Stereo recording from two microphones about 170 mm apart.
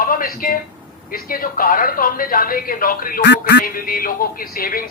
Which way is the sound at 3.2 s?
70° left (ahead or behind).